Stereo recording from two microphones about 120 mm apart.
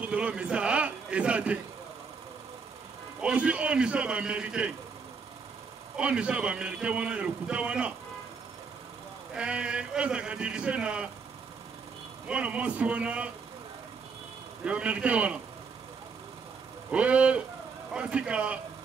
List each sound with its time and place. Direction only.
0.0 s a man's voice: 10° right (ahead or behind)
3.2 s a man's voice: 10° right (ahead or behind)
5.9 s a man's voice: 10° right (ahead or behind)
9.3 s a man's voice: 10° right (ahead or behind)
12.3 s a man's voice: 10° right (ahead or behind)
14.6 s a man's voice: 10° right (ahead or behind)
16.9 s a man's voice: 10° right (ahead or behind)